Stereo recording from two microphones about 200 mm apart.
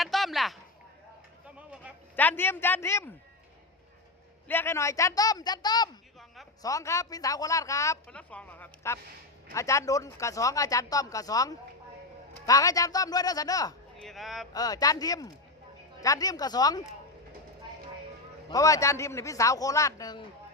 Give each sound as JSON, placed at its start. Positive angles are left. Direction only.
{"t": 0.0, "sound": "speech", "side_deg": 0}
{"t": 2.1, "sound": "speech", "side_deg": 10}
{"t": 4.4, "sound": "speech", "side_deg": 10}
{"t": 6.1, "sound": "a sound", "side_deg": 0}
{"t": 6.6, "sound": "speech", "side_deg": 15}
{"t": 13.9, "sound": "speech", "side_deg": 0}
{"t": 14.5, "sound": "speech", "side_deg": 20}
{"t": 18.4, "sound": "speech", "side_deg": 15}